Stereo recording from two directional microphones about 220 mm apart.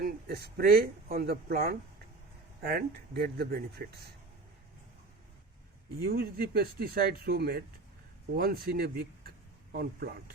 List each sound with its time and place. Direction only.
0.0 s speech: 45° right (ahead or behind)
6.1 s speech: 40° right (ahead or behind)